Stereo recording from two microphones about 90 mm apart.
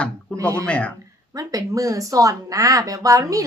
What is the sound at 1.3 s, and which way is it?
Speech, 40° right (ahead or behind).